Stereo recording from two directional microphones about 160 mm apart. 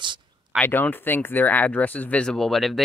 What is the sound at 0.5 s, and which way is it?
Speech, 10° left (ahead or behind).